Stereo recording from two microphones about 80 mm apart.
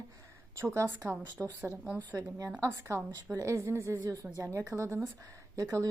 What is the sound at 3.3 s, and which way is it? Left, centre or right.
Speech, right.